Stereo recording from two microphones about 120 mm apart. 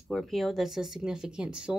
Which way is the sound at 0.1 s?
Centre (ahead or behind).